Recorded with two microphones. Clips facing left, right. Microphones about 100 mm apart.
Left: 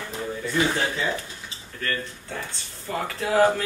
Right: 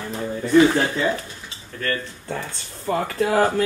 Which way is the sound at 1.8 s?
45° right (ahead or behind).